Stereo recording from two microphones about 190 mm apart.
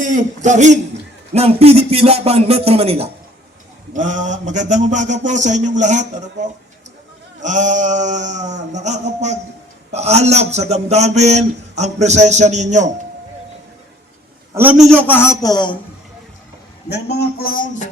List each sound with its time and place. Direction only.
0.0 s a man's voice: 40° right (ahead or behind)
14.5 s a man's voice: 10° right (ahead or behind)
14.8 s speech: 10° left (ahead or behind)
16.9 s speech: 60° left (ahead or behind)